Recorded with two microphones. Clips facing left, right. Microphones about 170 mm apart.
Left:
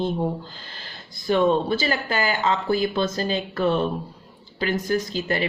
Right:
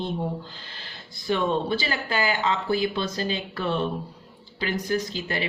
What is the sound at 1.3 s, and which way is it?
Speech, 45° left (ahead or behind).